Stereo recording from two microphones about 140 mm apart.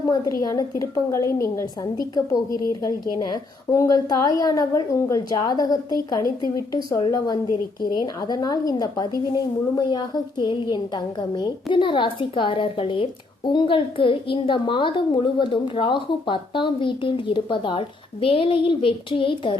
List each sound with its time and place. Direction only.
0.4 s a woman's voice: 25° left (ahead or behind)